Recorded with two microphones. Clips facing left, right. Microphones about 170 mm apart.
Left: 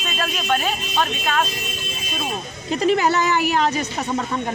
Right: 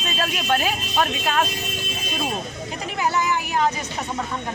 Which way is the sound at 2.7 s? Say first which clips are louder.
Left 8 dB; 85° left.